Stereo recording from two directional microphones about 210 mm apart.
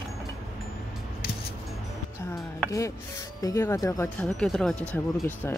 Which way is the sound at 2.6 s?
15° left (ahead or behind).